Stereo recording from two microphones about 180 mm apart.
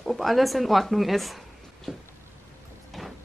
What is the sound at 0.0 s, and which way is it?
A woman's voice, centre (ahead or behind).